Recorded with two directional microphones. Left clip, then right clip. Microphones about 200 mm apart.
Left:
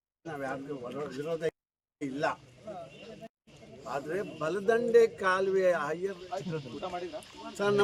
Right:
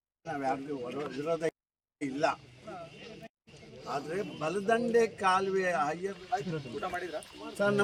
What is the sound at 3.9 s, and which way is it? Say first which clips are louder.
A man's voice: left 1 dB; 15° left (ahead or behind).